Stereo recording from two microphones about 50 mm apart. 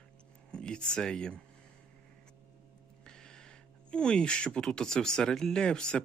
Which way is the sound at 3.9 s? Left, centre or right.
Centre.